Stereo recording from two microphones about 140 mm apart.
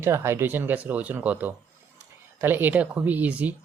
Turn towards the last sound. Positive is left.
turn(degrees=-10)  # may be behind; listen again after turning